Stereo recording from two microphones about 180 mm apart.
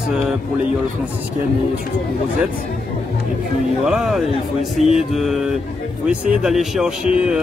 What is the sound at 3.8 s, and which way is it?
Speech, centre (ahead or behind).